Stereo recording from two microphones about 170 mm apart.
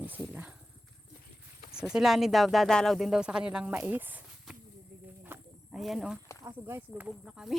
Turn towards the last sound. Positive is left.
turn(degrees=-5)  # may be behind; listen again after turning